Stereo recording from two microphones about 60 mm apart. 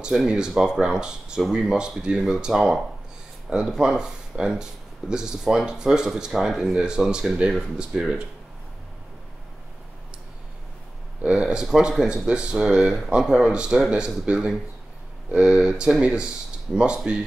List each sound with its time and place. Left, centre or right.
0.3 s speech: centre
11.2 s speech: centre